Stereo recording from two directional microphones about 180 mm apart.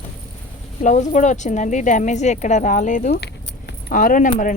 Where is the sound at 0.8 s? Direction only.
40° left (ahead or behind).